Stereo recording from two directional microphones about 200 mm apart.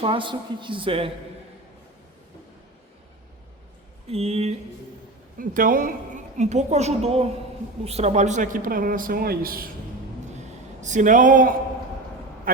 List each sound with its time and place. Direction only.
0.0 s a woman's voice: 25° right (ahead or behind)
4.1 s a woman's voice: 30° right (ahead or behind)
5.4 s a woman's voice: 45° right (ahead or behind)
10.3 s a sound: 35° right (ahead or behind)